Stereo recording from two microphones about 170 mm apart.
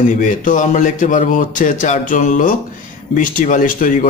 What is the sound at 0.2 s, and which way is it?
Speech, 45° left (ahead or behind).